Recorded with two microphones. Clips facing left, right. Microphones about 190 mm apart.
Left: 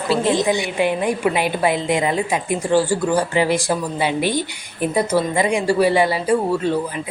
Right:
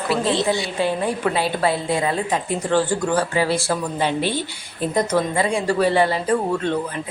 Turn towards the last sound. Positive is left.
turn(degrees=5)  # may be behind; listen again after turning